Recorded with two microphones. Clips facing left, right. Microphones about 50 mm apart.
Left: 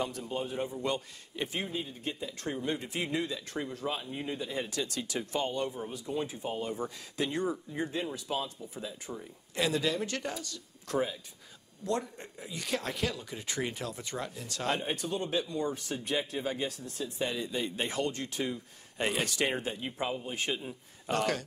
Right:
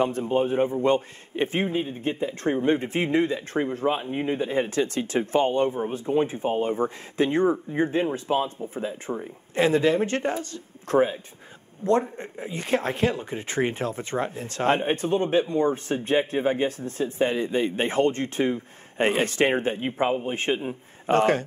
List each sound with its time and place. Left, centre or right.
0.0 s a man's voice: right